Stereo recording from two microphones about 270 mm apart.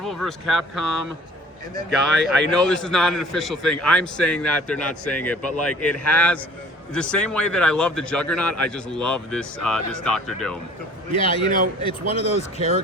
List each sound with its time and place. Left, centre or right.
0.0 s speech: centre
11.1 s speech: centre